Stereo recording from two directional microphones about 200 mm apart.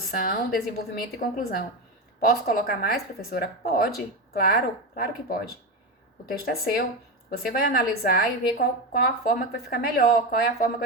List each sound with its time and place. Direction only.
0.1 s a woman's voice: 50° left (ahead or behind)